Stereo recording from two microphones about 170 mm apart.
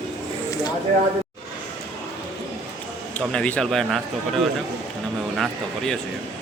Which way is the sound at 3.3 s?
5° left (ahead or behind).